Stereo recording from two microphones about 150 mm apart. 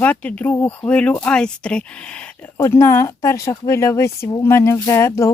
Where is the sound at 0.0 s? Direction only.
10° left (ahead or behind).